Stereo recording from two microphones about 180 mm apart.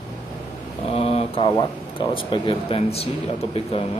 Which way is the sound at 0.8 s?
35° left (ahead or behind).